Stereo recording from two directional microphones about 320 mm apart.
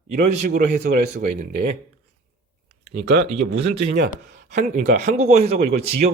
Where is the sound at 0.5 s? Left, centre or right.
Right.